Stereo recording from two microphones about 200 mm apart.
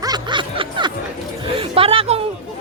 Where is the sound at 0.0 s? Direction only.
20° right (ahead or behind).